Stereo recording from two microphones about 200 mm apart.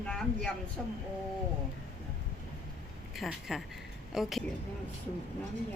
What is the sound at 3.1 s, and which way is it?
A woman's voice, centre (ahead or behind).